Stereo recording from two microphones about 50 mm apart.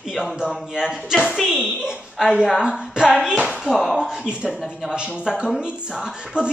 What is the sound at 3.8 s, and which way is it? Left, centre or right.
Speech, centre.